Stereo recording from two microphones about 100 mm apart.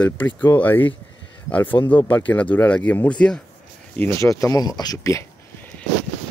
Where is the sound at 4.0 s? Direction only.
25° left (ahead or behind).